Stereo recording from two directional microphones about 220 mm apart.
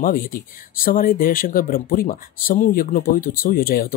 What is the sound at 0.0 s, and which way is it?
Speech, 40° left (ahead or behind).